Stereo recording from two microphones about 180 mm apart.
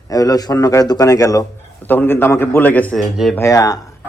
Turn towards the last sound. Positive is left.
turn(degrees=20)  # may be behind; listen again after turning